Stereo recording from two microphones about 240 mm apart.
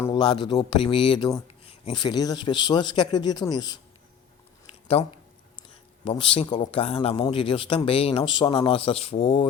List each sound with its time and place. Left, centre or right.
0.0 s speech: centre
4.6 s a sound: left
6.1 s speech: left